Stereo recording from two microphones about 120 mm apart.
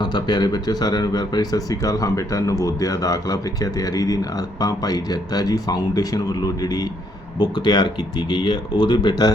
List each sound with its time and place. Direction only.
0.0 s speech: 35° left (ahead or behind)